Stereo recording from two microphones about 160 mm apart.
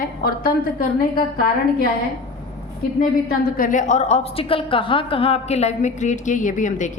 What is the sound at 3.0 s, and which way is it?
A woman's voice, 60° left (ahead or behind).